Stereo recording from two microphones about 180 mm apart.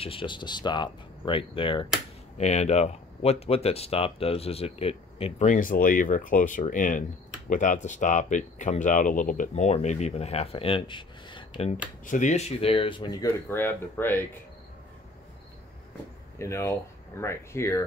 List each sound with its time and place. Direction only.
0.0 s speech: 30° left (ahead or behind)
12.1 s speech: 40° left (ahead or behind); by 14.2 s 10° left (ahead or behind)
16.3 s speech: 15° left (ahead or behind)